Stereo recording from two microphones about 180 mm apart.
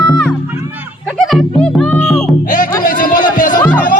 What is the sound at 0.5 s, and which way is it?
Music, 10° right (ahead or behind).